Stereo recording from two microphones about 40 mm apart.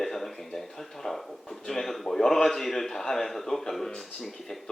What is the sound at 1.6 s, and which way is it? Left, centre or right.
Speech, centre.